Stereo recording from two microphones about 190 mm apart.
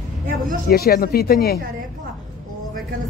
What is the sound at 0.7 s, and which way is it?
Speech, 55° left (ahead or behind).